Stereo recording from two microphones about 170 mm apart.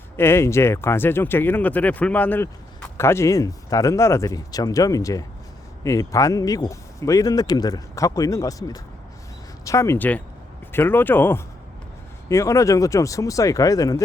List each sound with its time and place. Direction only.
0.2 s speech: 15° left (ahead or behind)